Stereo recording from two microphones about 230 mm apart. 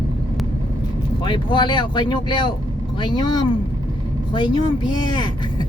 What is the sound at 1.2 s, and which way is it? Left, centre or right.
Speech, left.